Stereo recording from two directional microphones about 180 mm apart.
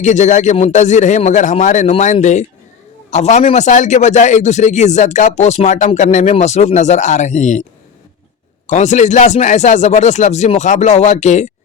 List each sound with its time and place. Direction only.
0.0 s a man's voice: 40° left (ahead or behind)
8.6 s a man's voice: 40° left (ahead or behind)